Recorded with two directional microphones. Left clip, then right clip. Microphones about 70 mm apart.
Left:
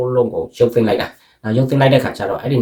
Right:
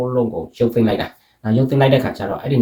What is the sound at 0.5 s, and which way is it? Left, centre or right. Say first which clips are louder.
Speech: left 3 dB; left.